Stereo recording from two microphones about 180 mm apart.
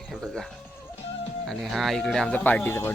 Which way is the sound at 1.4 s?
Centre (ahead or behind).